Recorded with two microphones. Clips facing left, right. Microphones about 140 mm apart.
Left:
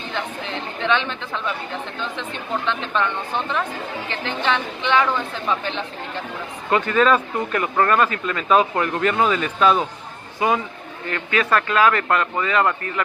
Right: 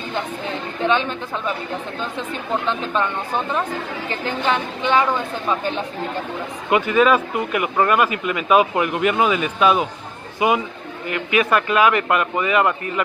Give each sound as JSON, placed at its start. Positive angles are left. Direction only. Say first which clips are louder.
{"t": 2.1, "sound": "speech", "louder": "right 4 dB", "side_deg": -10}
{"t": 4.1, "sound": "a woman's voice", "louder": "right 2 dB", "side_deg": -40}
{"t": 5.0, "sound": "speech", "louder": "right 1 dB", "side_deg": -15}
{"t": 6.7, "sound": "speech", "louder": "right 2 dB", "side_deg": -10}